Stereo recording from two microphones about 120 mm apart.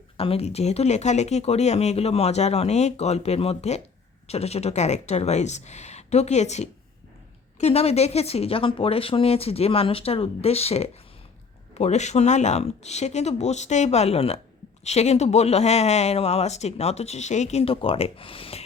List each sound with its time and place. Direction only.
0.2 s speech: 55° left (ahead or behind)
7.6 s speech: 60° left (ahead or behind)